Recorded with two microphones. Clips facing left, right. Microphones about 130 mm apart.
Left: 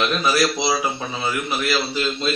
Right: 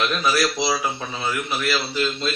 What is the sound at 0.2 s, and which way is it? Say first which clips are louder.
Speech: left 1 dB; centre (ahead or behind).